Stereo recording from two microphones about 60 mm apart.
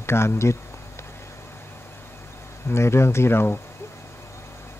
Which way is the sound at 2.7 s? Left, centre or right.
Left.